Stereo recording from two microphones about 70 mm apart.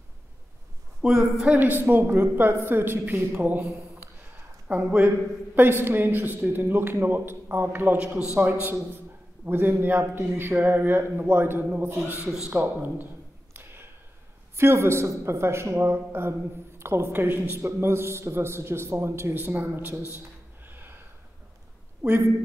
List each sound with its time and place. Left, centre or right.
1.0 s speech: centre
1.5 s a man's voice: right
4.6 s a man's voice: centre
9.5 s a man's voice: right
12.5 s a sound: right
14.6 s a man's voice: right
20.2 s a sound: right
22.0 s a man's voice: centre